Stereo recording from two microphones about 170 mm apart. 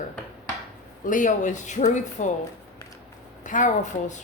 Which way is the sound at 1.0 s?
50° left (ahead or behind).